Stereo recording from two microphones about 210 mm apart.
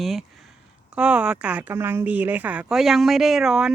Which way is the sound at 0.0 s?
Centre (ahead or behind).